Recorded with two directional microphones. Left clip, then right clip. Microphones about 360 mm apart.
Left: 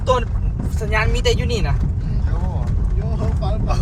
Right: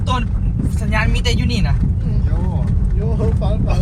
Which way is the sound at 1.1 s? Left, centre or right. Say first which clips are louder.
Left 2 dB; left.